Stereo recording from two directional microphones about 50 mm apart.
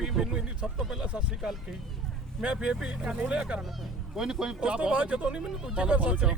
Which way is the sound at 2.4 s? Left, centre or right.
Right.